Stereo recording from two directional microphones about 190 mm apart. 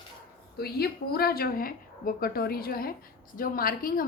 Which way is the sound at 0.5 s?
55° left (ahead or behind).